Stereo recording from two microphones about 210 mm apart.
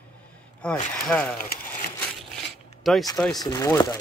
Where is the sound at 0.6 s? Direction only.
10° left (ahead or behind).